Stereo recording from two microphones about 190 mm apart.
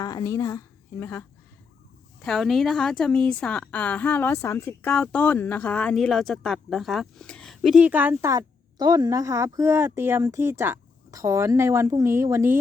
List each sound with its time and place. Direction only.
0.0 s a woman's voice: 20° left (ahead or behind)
2.2 s a woman's voice: centre (ahead or behind)